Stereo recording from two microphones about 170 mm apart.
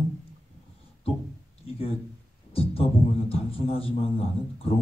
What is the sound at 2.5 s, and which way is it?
A man's voice, 35° left (ahead or behind).